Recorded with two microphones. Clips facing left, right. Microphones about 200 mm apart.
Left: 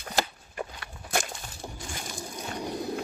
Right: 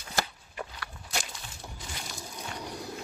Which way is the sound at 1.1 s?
50° left (ahead or behind).